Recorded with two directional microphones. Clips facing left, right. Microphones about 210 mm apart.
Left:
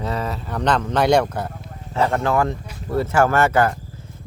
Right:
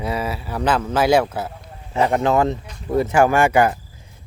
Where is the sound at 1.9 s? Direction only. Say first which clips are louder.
Right 2 dB; 15° right (ahead or behind).